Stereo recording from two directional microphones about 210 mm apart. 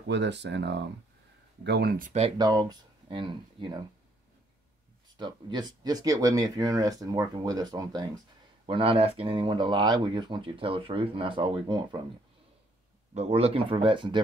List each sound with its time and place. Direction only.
0.1 s speech: 55° right (ahead or behind); by 2.3 s 35° right (ahead or behind)
2.3 s speech: 20° right (ahead or behind)
5.1 s speech: 20° right (ahead or behind)
13.1 s speech: 30° right (ahead or behind)